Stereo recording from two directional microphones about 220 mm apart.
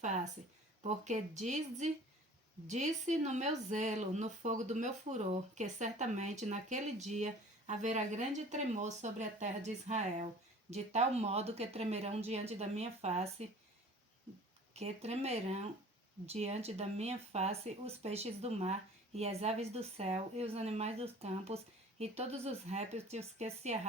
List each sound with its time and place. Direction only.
0.8 s speech: 30° right (ahead or behind)
14.7 s speech: 30° right (ahead or behind)